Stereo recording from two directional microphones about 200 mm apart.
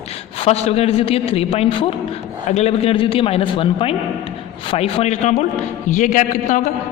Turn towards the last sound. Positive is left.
turn(degrees=40)  # may be behind; listen again after turning